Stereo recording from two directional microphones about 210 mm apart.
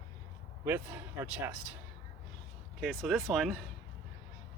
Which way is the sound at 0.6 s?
10° right (ahead or behind).